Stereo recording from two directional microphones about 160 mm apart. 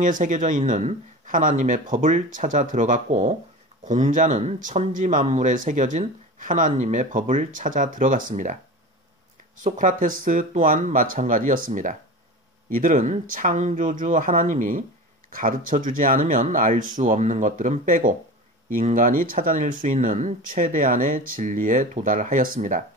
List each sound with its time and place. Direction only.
0.0 s speech: 55° right (ahead or behind)
9.6 s speech: 55° right (ahead or behind)